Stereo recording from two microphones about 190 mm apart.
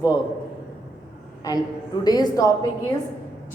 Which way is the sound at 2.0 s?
20° left (ahead or behind).